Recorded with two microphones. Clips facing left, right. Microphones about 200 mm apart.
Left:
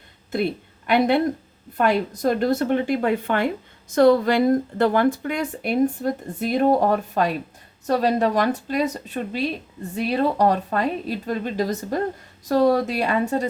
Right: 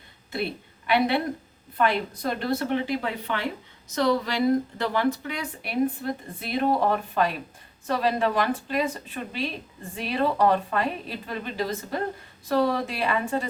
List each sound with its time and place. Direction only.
0.3 s a woman's voice: 45° left (ahead or behind)